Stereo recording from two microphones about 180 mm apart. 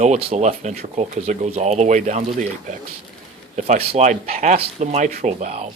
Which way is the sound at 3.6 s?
35° right (ahead or behind).